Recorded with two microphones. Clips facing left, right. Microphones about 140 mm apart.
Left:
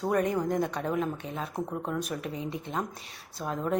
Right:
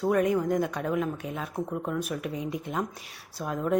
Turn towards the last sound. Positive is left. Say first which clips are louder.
# right 2 dB
turn(degrees=-5)  # may be behind; listen again after turning